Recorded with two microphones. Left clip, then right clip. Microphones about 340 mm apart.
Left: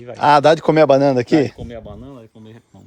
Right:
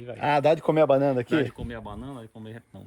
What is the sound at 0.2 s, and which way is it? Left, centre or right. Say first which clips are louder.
A man's voice: left 10 dB; left.